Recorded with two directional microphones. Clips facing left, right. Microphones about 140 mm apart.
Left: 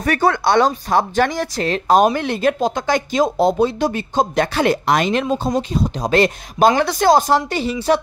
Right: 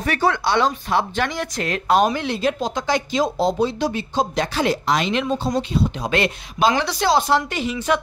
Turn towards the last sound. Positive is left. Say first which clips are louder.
# left 4 dB
turn(degrees=35)  # may be behind; listen again after turning